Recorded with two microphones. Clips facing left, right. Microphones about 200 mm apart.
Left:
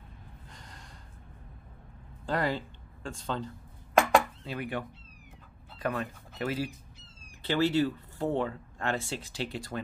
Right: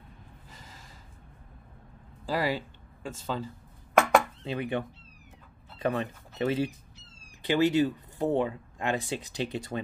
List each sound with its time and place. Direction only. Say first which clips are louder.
0.5 s gasp: right 1 dB; 5° right (ahead or behind)
2.2 s a sound: right 1 dB; 5° right (ahead or behind)
3.3 s speech: right 1 dB; 5° right (ahead or behind)
4.0 s chopping: right 1 dB; 25° right (ahead or behind)
5.8 s speech: right 3 dB; 25° right (ahead or behind)